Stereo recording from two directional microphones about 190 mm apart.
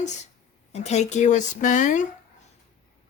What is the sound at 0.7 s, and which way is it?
Speech, 35° left (ahead or behind).